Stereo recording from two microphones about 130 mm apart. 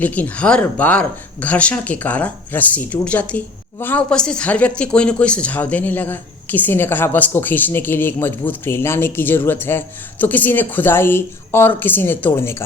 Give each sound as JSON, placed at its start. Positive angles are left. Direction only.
{"t": 0.0, "sound": "speech", "side_deg": 10}